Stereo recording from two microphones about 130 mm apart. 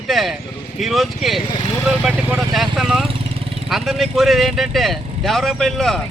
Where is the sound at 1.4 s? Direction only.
35° left (ahead or behind).